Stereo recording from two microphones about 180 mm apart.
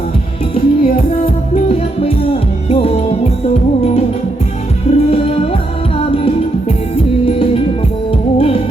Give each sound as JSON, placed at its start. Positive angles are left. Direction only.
{"t": 0.5, "sound": "music", "side_deg": 30}
{"t": 6.9, "sound": "music", "side_deg": 30}